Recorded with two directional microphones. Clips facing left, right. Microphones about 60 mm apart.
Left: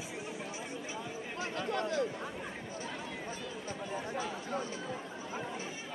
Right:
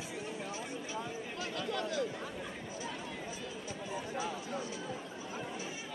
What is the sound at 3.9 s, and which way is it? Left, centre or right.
Speech, left.